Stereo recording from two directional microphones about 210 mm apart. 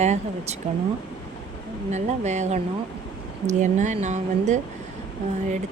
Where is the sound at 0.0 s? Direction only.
35° right (ahead or behind).